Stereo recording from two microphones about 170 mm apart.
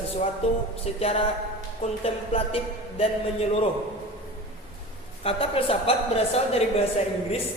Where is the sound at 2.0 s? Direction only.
35° left (ahead or behind).